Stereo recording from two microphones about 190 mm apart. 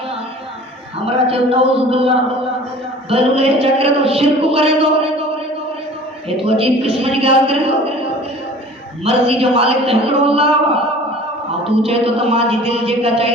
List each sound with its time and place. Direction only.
1.3 s a man's voice: 30° right (ahead or behind)
6.2 s a man's voice: 30° right (ahead or behind)
9.0 s a man's voice: 30° right (ahead or behind)